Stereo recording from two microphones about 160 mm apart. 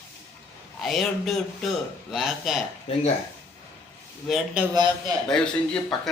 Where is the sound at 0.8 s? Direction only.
Centre (ahead or behind).